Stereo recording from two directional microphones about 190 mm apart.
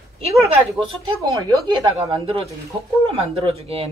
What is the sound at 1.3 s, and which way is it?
Speech, 20° right (ahead or behind).